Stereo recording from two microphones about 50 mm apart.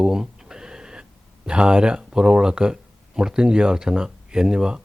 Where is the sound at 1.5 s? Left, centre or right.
Right.